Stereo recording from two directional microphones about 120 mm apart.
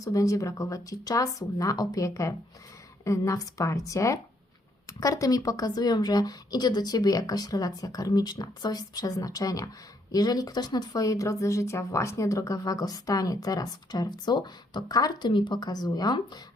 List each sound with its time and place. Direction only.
0.0 s speech: 30° left (ahead or behind)